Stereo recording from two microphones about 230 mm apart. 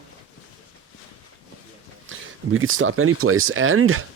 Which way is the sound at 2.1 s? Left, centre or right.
Right.